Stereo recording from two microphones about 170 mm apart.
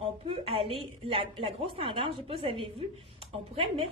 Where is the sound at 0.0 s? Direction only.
35° right (ahead or behind).